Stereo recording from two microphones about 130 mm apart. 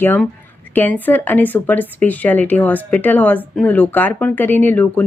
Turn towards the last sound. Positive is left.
turn(degrees=15)  # may be behind; listen again after turning